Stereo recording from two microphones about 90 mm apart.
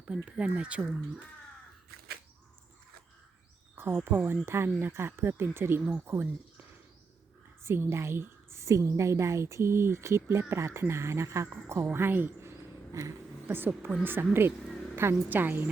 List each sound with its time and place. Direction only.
0.3 s speech: 15° right (ahead or behind)
3.8 s a woman's voice: 25° right (ahead or behind)
7.6 s a woman's voice: 30° right (ahead or behind)
11.9 s a sound: 25° right (ahead or behind)
14.0 s a woman's voice: 25° right (ahead or behind)